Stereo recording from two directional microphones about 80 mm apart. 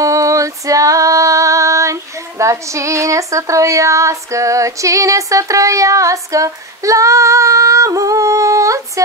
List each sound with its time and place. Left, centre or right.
0.0 s female singing: right